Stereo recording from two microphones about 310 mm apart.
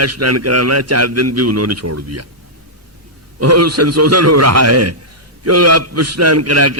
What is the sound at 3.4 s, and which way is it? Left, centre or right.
A man's voice, right.